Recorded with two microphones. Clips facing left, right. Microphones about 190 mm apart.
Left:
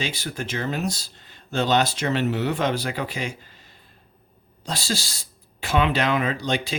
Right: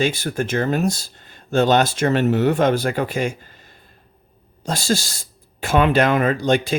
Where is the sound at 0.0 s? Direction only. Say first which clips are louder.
Right 9 dB; 50° right (ahead or behind).